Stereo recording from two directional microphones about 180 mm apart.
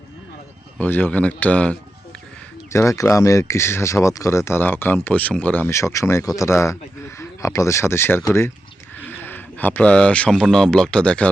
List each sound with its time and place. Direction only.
0.8 s speech: 10° left (ahead or behind)